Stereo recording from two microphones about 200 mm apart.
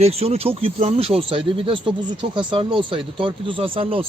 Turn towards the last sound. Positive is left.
turn(degrees=-25)  # may be behind; listen again after turning